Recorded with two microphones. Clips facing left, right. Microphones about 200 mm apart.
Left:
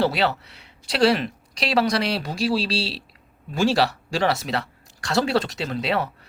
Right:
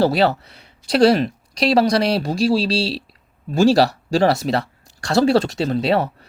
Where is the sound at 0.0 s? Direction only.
40° right (ahead or behind).